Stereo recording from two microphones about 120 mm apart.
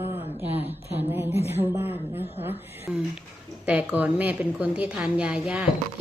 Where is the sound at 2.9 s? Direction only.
5° right (ahead or behind).